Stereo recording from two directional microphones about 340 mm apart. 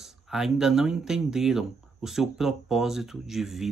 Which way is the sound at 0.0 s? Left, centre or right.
Centre.